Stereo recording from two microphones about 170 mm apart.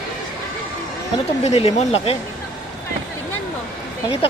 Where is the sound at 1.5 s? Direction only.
40° left (ahead or behind).